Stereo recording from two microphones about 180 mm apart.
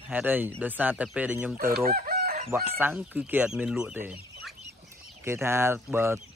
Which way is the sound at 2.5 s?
10° right (ahead or behind).